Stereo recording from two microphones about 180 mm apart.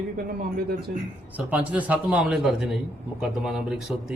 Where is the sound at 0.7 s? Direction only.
60° right (ahead or behind).